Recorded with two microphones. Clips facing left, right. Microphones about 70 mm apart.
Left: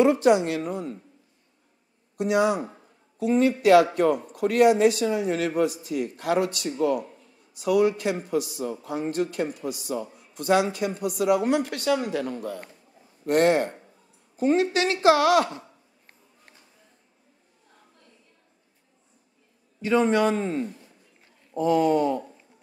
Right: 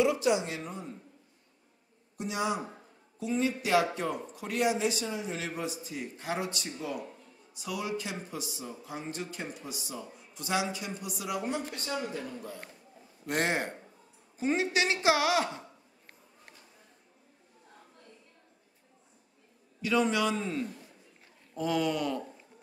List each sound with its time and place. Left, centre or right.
0.0 s speech: left
2.1 s speech: left
13.2 s a man's voice: left
19.8 s a man's voice: left
21.5 s a man's voice: left